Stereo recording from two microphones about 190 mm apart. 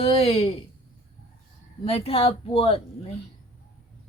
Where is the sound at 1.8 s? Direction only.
30° left (ahead or behind).